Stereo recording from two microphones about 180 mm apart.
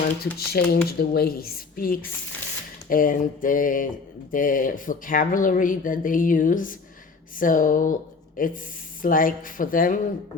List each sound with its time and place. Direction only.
0.3 s a woman's voice: 60° left (ahead or behind)